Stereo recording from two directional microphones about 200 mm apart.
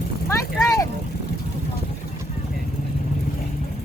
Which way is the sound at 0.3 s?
15° left (ahead or behind).